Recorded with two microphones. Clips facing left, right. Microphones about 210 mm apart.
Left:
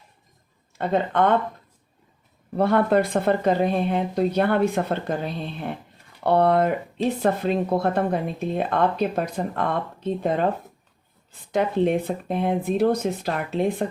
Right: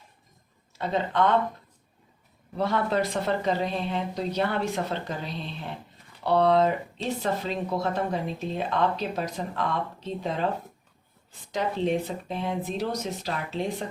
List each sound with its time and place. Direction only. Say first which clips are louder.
0.8 s speech: left 4 dB; 55° left (ahead or behind)
2.6 s speech: left 6 dB; 55° left (ahead or behind)
11.5 s speech: left 5 dB; 55° left (ahead or behind)